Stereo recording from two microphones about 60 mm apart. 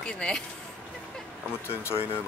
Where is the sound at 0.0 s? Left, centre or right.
Centre.